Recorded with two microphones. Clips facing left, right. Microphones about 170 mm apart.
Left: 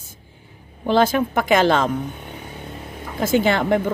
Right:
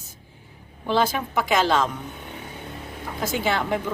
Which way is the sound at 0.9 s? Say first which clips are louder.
Left 5 dB; 60° left (ahead or behind).